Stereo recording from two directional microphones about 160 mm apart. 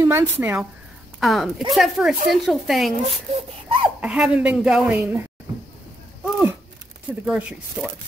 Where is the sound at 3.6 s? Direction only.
30° right (ahead or behind).